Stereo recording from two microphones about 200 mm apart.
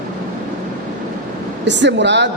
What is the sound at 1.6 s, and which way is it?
Speech, 60° right (ahead or behind).